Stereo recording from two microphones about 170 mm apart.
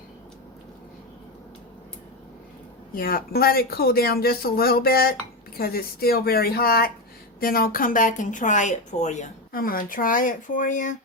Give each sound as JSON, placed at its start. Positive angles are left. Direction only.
{"t": 2.9, "sound": "speech", "side_deg": 60}